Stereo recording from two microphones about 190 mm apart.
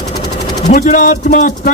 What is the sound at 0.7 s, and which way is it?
Speech, 40° left (ahead or behind).